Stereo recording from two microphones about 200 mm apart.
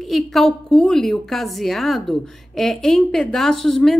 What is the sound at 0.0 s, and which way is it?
A woman's voice, centre (ahead or behind).